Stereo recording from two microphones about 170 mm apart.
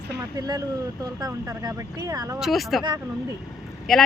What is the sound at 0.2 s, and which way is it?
Speech, 20° right (ahead or behind).